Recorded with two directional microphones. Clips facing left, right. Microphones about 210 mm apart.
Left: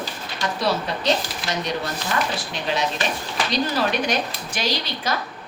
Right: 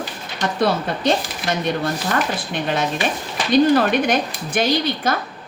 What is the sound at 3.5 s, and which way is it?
A woman's voice, 55° right (ahead or behind).